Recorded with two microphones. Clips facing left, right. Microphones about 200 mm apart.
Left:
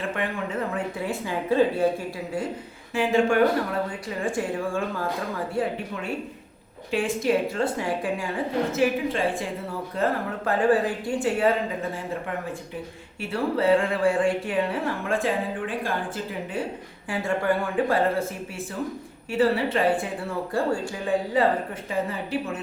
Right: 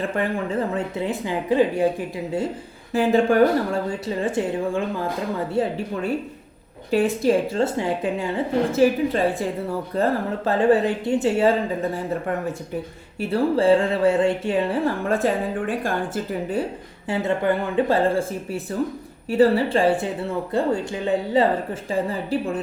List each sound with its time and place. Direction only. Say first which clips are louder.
0.1 s speech: right 5 dB; 30° right (ahead or behind)
2.9 s speech: right 3 dB; 35° right (ahead or behind)
6.9 s speech: right 4 dB; 35° right (ahead or behind)
8.7 s speech: right 7 dB; 35° right (ahead or behind)
13.1 s speech: right 5 dB; 30° right (ahead or behind)
15.0 s speech: right 4 dB; 40° right (ahead or behind)
17.1 s speech: right 3 dB; 20° right (ahead or behind)